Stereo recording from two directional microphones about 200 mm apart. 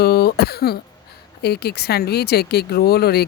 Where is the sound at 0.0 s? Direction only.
55° left (ahead or behind).